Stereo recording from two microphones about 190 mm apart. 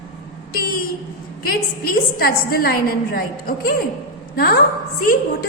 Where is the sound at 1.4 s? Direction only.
50° left (ahead or behind).